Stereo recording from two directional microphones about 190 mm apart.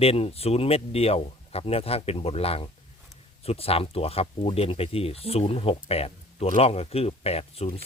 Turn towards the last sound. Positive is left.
turn(degrees=30)  # may be behind; listen again after turning